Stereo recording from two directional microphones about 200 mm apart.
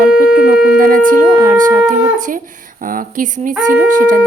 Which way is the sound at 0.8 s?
45° right (ahead or behind).